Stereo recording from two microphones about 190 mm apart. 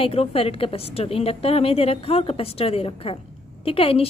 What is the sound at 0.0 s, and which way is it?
A woman's voice, 30° left (ahead or behind).